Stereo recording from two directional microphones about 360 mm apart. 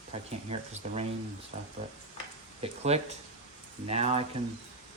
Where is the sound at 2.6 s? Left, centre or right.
Centre.